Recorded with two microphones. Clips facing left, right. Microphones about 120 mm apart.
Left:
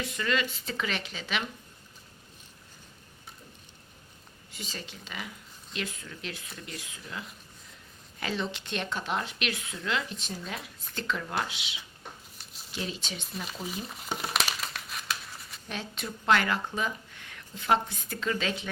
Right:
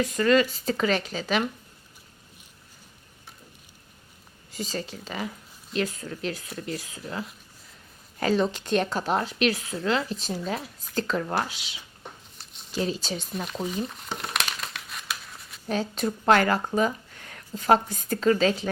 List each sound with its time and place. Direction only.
0.0 s speech: 40° right (ahead or behind)
4.5 s speech: 40° right (ahead or behind)
12.4 s a sound: 35° right (ahead or behind)
12.7 s speech: 40° right (ahead or behind)
13.3 s speech: centre (ahead or behind)
13.8 s crumpling: centre (ahead or behind)
15.7 s speech: 40° right (ahead or behind)